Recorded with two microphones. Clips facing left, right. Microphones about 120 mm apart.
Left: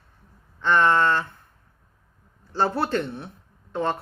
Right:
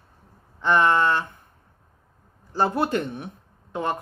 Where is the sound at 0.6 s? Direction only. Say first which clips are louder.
Even; 15° right (ahead or behind).